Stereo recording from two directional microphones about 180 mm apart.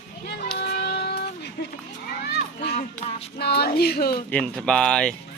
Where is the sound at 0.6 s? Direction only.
70° left (ahead or behind).